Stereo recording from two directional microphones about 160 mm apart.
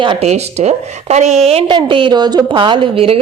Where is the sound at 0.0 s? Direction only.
30° right (ahead or behind).